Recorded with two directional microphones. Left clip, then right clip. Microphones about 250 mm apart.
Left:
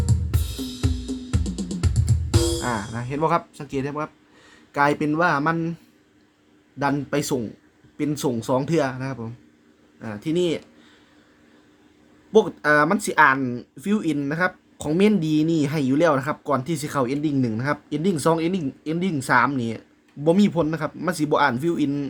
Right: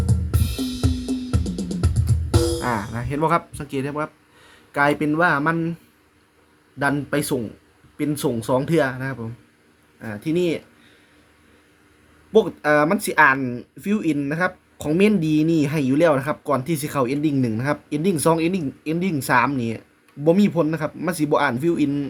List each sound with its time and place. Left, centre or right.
0.5 s cymbal: right
1.3 s music: left
2.6 s speech: centre
6.7 s speech: centre
12.3 s speech: centre